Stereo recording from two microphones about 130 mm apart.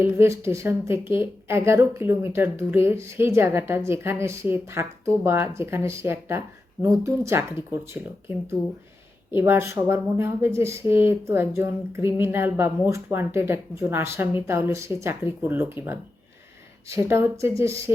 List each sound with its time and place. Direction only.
0.0 s speech: 20° right (ahead or behind)
9.4 s speech: 20° right (ahead or behind)